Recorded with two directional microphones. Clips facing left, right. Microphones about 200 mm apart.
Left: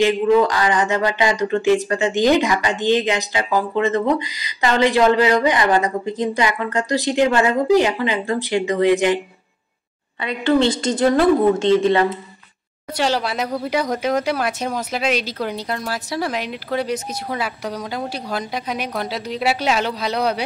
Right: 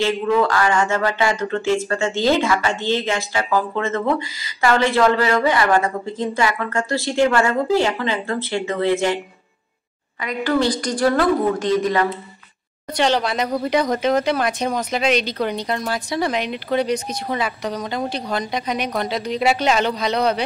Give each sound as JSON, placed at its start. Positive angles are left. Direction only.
{"t": 0.0, "sound": "speech", "side_deg": 15}
{"t": 10.2, "sound": "a woman's voice", "side_deg": 25}
{"t": 12.9, "sound": "speech", "side_deg": 5}